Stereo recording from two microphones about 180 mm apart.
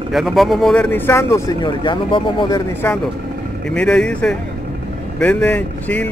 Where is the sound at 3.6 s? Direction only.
5° left (ahead or behind).